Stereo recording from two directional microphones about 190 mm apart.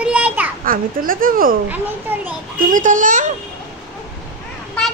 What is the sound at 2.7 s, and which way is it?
Speech, 45° right (ahead or behind).